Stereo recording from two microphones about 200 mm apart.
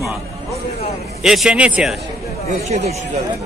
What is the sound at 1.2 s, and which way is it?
Speech, centre (ahead or behind).